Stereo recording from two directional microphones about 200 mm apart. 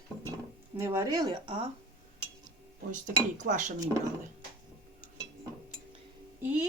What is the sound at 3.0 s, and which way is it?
Speech, 40° right (ahead or behind).